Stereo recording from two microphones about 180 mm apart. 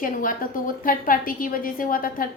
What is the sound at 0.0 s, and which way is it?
A woman's voice, 50° left (ahead or behind).